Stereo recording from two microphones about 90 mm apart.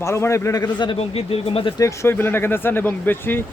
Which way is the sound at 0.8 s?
80° left.